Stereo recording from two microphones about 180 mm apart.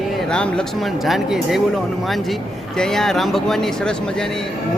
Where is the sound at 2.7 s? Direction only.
5° left (ahead or behind).